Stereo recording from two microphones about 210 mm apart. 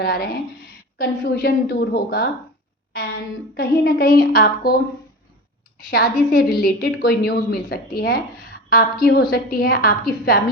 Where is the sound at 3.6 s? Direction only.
45° left (ahead or behind).